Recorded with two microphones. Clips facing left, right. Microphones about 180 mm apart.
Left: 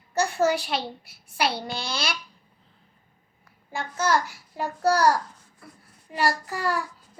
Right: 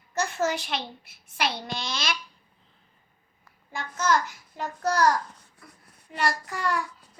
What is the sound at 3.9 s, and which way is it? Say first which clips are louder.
A child's voice: left 1 dB; 10° left (ahead or behind).